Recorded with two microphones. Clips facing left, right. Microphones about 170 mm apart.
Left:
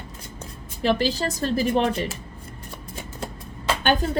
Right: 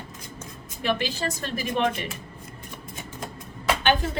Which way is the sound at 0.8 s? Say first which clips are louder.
Left 5 dB; 35° left (ahead or behind).